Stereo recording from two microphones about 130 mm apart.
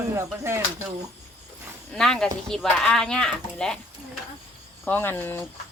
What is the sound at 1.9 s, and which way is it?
Speech, 5° left (ahead or behind).